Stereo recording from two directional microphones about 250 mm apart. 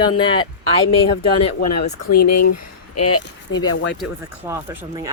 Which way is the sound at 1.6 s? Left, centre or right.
Left.